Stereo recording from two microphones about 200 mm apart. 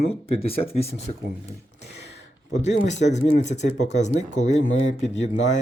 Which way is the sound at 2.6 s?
35° left (ahead or behind).